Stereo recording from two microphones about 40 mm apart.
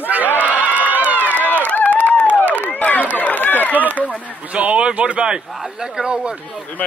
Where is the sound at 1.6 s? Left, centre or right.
Left.